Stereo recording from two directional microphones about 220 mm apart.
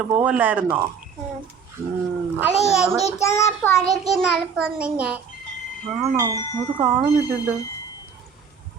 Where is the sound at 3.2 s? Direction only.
10° left (ahead or behind).